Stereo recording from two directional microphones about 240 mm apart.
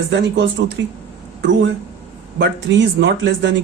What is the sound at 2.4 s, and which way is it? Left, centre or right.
Speech, right.